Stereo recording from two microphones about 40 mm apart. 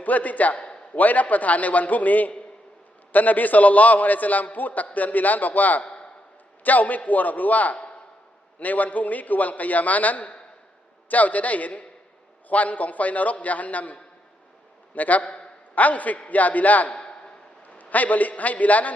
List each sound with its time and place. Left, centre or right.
0.0 s a man's voice: left
5.8 s a sound: left
6.7 s a man's voice: left
15.2 s a man's voice: left
15.7 s a man's voice: left
16.9 s a sound: left
17.7 s a man's voice: left